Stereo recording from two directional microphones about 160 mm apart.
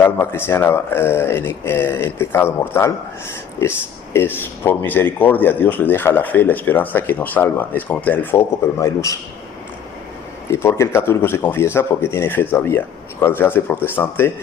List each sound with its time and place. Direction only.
0.0 s speech: 15° left (ahead or behind)
10.5 s speech: 15° left (ahead or behind)